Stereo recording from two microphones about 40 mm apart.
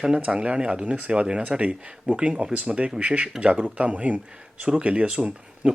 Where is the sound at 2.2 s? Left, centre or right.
Right.